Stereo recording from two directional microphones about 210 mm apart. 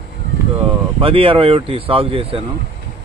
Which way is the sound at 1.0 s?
25° right (ahead or behind).